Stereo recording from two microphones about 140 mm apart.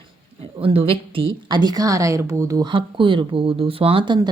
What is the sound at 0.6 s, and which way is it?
Speech, 40° right (ahead or behind).